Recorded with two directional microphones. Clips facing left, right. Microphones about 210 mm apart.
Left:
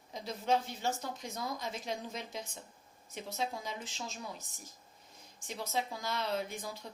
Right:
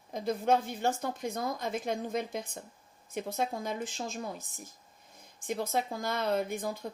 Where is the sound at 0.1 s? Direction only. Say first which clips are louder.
Right 5 dB; 55° right (ahead or behind).